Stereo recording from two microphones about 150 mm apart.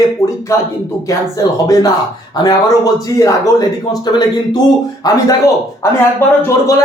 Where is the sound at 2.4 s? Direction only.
25° left (ahead or behind).